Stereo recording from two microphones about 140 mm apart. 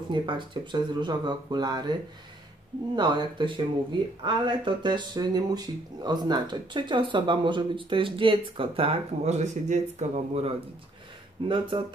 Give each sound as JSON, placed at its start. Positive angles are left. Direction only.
{"t": 0.1, "sound": "speech", "side_deg": -35}
{"t": 3.0, "sound": "speech", "side_deg": -30}
{"t": 11.4, "sound": "speech", "side_deg": -35}